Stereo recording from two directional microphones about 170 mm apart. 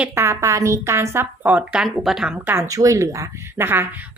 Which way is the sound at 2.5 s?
20° right (ahead or behind).